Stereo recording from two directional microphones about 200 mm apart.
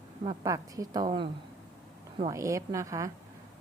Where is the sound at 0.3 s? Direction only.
15° right (ahead or behind).